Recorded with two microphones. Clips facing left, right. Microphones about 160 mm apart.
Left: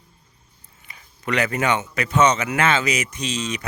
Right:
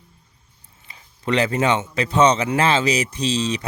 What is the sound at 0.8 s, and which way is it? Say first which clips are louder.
Speech: right 3 dB; 25° right (ahead or behind).